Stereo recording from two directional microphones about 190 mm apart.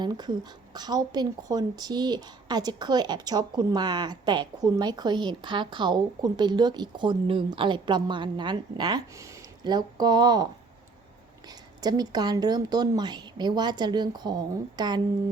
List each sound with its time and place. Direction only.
0.0 s speech: 20° right (ahead or behind)